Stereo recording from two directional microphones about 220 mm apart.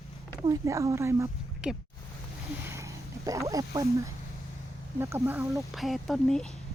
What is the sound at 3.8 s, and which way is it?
Speech, 15° right (ahead or behind).